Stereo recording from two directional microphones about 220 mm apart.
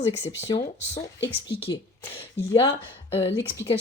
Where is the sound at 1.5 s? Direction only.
50° left (ahead or behind).